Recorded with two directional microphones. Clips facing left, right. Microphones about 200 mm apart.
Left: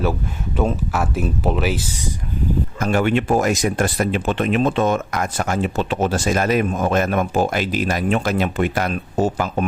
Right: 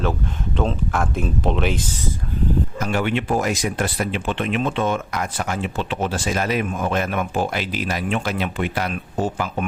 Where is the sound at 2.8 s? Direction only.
45° left (ahead or behind).